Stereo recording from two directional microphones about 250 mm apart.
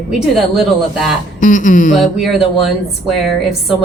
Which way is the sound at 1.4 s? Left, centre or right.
Left.